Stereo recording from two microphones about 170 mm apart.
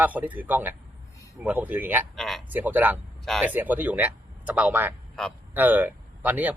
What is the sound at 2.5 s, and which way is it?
Speech, 10° right (ahead or behind).